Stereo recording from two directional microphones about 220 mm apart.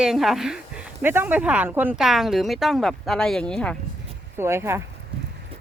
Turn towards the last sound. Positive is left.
turn(degrees=-10)  # may be behind; listen again after turning